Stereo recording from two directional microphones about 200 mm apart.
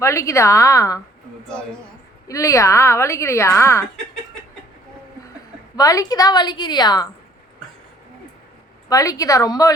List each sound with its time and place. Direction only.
0.0 s a woman's voice: 15° left (ahead or behind)
2.2 s a woman's voice: 15° left (ahead or behind)
5.7 s a woman's voice: 15° left (ahead or behind)
8.9 s a woman's voice: 15° left (ahead or behind)